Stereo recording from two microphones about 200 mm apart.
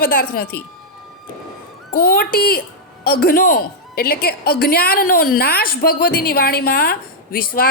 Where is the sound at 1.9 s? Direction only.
50° left (ahead or behind).